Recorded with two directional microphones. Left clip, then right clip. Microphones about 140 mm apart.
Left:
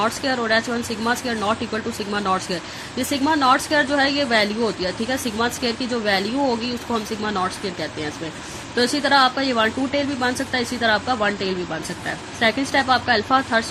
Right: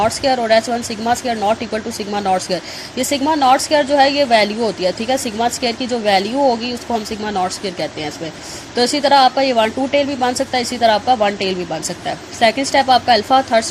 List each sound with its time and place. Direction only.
0.0 s a woman's voice: 30° right (ahead or behind)